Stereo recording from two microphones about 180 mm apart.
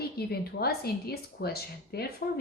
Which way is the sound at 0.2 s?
60° left (ahead or behind).